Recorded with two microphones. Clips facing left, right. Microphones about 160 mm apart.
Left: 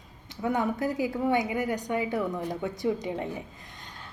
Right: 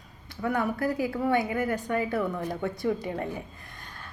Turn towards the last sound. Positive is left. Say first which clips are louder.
# even
turn(degrees=20)  # may be behind; listen again after turning